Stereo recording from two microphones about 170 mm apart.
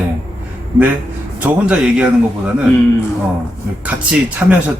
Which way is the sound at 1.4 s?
10° right (ahead or behind).